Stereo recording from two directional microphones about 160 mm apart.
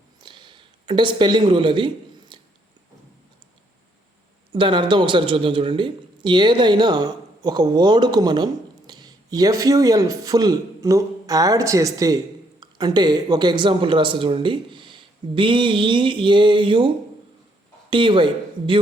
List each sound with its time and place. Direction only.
0.2 s a sound: 30° right (ahead or behind)
4.5 s speech: 30° right (ahead or behind)
17.9 s speech: 30° right (ahead or behind)